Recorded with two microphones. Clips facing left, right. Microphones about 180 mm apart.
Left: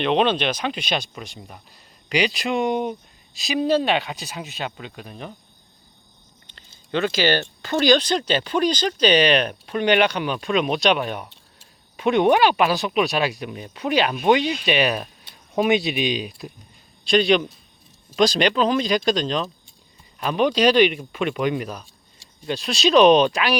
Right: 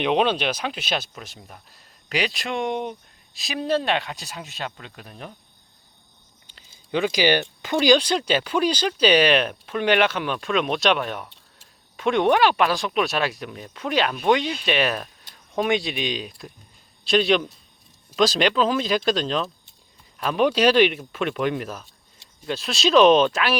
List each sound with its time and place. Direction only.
0.0 s speech: 10° right (ahead or behind)
6.5 s speech: 10° right (ahead or behind)